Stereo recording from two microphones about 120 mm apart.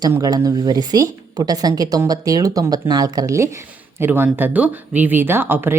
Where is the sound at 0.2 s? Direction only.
30° right (ahead or behind).